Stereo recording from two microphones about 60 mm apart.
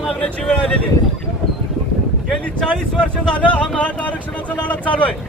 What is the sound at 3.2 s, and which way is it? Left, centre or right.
Speech, centre.